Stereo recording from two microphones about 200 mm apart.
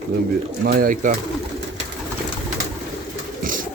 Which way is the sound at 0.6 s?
45° right (ahead or behind).